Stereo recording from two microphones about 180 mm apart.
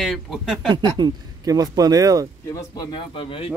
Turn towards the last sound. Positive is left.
turn(degrees=30)  # may be behind; listen again after turning